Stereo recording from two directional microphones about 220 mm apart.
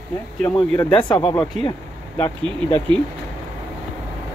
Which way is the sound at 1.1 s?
20° left (ahead or behind).